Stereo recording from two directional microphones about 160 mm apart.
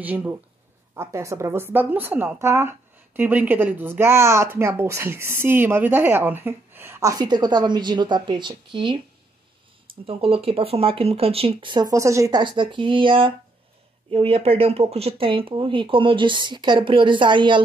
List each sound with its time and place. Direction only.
0.0 s speech: 10° right (ahead or behind); by 9.0 s 30° right (ahead or behind)
10.0 s speech: 35° right (ahead or behind)